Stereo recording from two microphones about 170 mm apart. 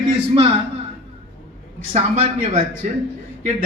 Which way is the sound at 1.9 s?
40° right (ahead or behind).